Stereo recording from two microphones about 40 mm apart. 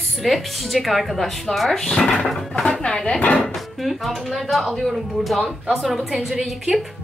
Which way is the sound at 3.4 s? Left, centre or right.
Centre.